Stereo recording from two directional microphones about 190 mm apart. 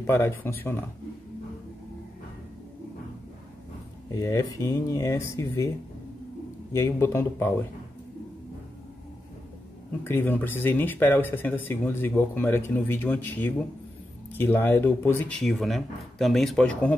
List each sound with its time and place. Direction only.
0.0 s speech: 10° left (ahead or behind)
4.1 s speech: 15° left (ahead or behind)
6.7 s speech: 15° left (ahead or behind)
10.0 s speech: 10° left (ahead or behind)